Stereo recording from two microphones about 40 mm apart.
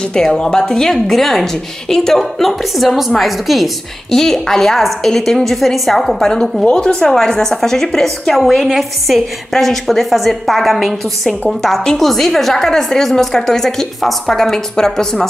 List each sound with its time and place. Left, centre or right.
0.1 s a woman's voice: centre
4.1 s a woman's voice: centre
6.7 s a woman's voice: left
8.6 s a woman's voice: centre